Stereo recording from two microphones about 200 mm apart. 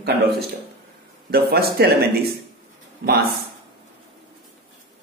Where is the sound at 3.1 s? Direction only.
50° right (ahead or behind).